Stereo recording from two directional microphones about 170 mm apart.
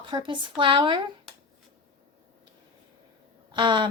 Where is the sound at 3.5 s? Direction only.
25° right (ahead or behind).